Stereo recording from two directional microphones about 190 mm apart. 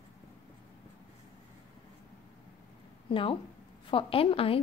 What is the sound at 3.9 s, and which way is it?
Speech, 30° left (ahead or behind).